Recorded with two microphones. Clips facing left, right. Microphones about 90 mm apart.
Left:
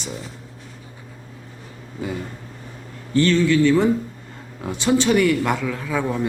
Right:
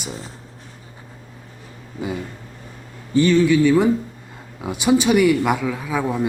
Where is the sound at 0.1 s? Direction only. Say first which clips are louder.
Left 1 dB; 35° right (ahead or behind).